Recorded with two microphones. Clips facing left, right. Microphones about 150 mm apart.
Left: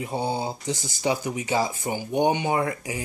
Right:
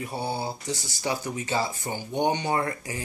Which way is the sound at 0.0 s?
20° left (ahead or behind).